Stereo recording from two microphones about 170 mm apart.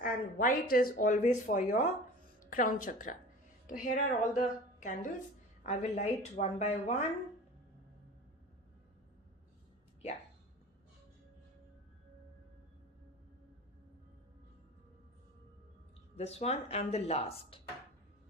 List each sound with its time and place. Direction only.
0.0 s speech: 55° left (ahead or behind)
16.1 s speech: 40° left (ahead or behind)